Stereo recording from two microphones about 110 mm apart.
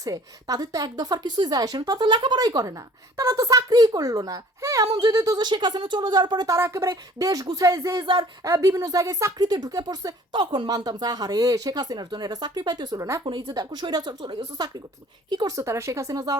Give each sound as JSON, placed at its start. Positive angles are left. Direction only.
{"t": 0.0, "sound": "a woman's voice", "side_deg": -35}
{"t": 6.6, "sound": "a woman's voice", "side_deg": -30}
{"t": 7.9, "sound": "speech", "side_deg": -50}
{"t": 8.4, "sound": "a woman's voice", "side_deg": -30}